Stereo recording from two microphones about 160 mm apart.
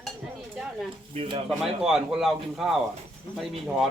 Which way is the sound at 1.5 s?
5° right (ahead or behind).